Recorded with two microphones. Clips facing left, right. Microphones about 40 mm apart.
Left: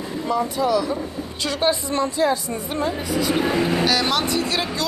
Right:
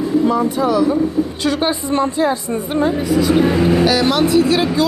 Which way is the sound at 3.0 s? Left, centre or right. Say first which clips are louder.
Right 7 dB; centre.